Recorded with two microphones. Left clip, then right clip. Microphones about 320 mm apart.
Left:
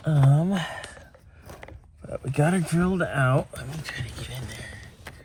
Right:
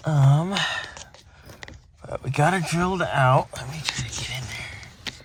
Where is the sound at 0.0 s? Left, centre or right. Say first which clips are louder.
Right 1 dB; right.